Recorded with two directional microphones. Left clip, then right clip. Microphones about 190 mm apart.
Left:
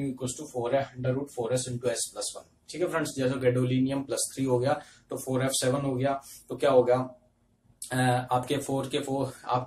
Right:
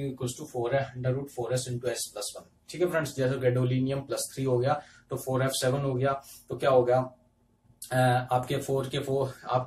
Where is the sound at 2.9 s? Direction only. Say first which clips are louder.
Even; 15° left (ahead or behind).